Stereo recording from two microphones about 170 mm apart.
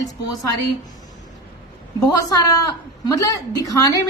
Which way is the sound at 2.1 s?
20° left (ahead or behind).